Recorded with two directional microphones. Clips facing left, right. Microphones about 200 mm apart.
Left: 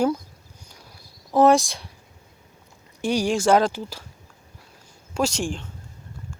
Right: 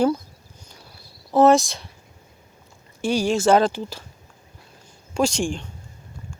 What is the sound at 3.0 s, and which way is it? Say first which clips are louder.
Speech: right 1 dB; 15° left (ahead or behind).